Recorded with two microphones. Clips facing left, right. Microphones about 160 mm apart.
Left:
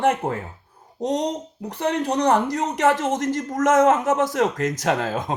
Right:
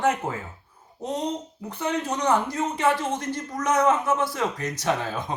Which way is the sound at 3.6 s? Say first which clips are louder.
Left 5 dB; 90° left.